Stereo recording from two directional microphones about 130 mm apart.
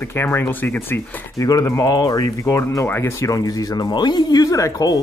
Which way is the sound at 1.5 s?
30° left (ahead or behind).